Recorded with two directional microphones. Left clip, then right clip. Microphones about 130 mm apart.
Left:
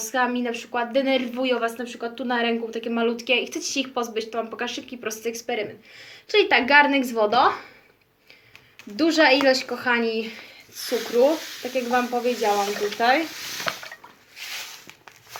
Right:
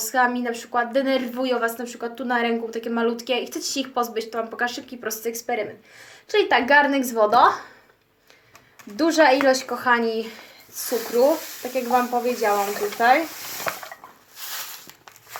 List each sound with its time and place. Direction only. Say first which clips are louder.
0.0 s a woman's voice: right 3 dB; 5° left (ahead or behind)
9.0 s speech: right 1 dB; 15° left (ahead or behind)
10.9 s speech: even; 30° left (ahead or behind)
11.2 s speech: right 1 dB; 15° left (ahead or behind)